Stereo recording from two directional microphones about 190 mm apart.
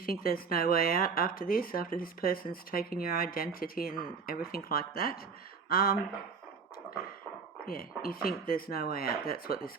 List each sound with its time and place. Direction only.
0.0 s speech: 50° left (ahead or behind)
7.6 s speech: 50° left (ahead or behind)